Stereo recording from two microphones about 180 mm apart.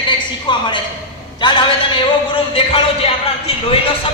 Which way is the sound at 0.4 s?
25° left (ahead or behind).